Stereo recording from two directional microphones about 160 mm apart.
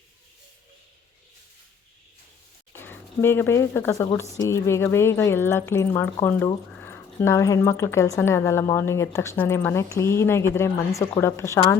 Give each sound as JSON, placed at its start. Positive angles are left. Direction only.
{"t": 2.7, "sound": "speech", "side_deg": 15}